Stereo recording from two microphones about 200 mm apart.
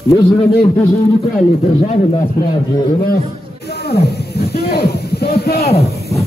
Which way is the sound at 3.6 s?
55° left (ahead or behind).